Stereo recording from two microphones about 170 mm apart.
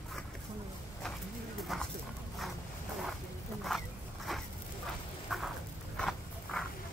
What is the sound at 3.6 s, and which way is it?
Wild animals, centre (ahead or behind).